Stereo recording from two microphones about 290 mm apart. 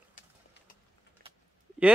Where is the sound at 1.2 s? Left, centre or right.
Right.